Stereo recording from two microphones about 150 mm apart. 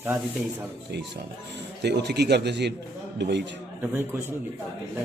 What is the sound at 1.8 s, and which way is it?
Speech, 90° right.